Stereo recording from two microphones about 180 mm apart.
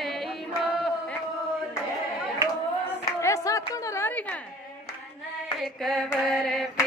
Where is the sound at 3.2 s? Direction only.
20° left (ahead or behind).